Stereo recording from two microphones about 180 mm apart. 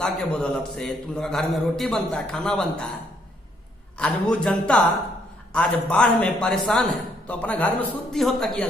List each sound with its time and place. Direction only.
0.0 s a man's voice: 5° left (ahead or behind)
4.0 s a man's voice: 5° left (ahead or behind)